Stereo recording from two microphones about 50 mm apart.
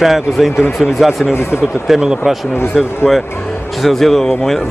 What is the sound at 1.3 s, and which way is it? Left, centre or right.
Speech, left.